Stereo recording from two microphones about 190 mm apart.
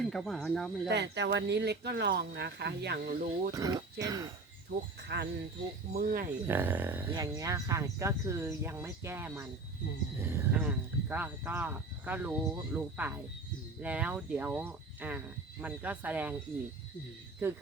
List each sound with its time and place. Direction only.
0.0 s speech: centre (ahead or behind)
0.9 s speech: 60° right (ahead or behind)
3.5 s speech: 20° right (ahead or behind)
5.0 s speech: 60° right (ahead or behind)
5.9 s speech: 45° right (ahead or behind)
6.5 s speech: 10° right (ahead or behind)